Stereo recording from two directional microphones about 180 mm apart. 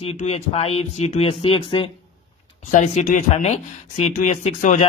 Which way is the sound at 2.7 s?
40° left (ahead or behind).